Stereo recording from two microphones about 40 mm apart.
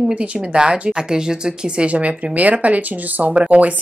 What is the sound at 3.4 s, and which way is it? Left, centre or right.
Speech, right.